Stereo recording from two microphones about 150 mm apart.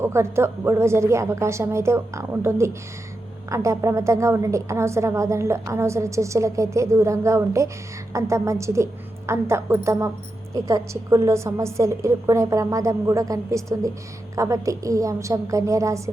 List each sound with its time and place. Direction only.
0.0 s a woman's voice: 20° right (ahead or behind)